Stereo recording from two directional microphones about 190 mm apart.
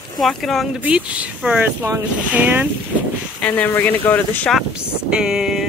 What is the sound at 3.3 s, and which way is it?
Speech, 5° left (ahead or behind).